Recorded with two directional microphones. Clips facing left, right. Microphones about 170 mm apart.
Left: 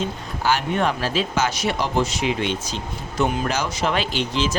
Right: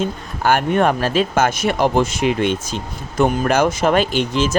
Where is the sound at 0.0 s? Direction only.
55° right (ahead or behind).